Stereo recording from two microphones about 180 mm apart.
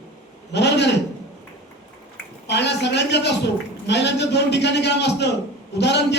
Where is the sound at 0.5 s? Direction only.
70° left (ahead or behind).